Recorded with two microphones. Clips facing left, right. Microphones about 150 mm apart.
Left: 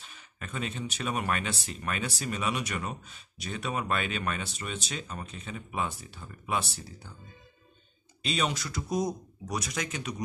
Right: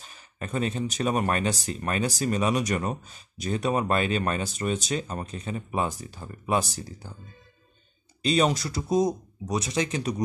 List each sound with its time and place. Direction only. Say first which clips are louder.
0.0 s speech: right 7 dB; 40° right (ahead or behind)
8.2 s speech: right 8 dB; 40° right (ahead or behind)